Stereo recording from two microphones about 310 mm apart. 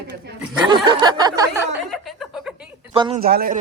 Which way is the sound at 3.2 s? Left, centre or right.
Right.